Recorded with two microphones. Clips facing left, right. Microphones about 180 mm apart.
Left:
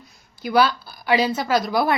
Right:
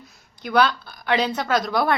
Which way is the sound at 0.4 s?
5° left (ahead or behind).